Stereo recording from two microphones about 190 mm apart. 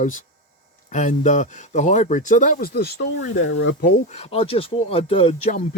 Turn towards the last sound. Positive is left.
turn(degrees=35)  # may be behind; listen again after turning